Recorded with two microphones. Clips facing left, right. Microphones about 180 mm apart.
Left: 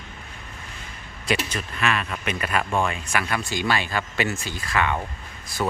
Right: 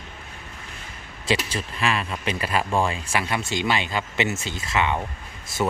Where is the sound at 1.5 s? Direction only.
30° right (ahead or behind).